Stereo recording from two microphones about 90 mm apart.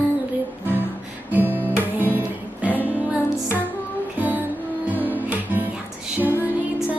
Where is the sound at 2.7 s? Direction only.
20° left (ahead or behind).